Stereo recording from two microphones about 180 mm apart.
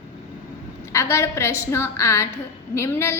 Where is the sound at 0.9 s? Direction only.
15° left (ahead or behind).